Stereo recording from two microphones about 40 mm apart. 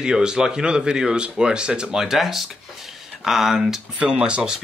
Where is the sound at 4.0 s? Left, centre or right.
Right.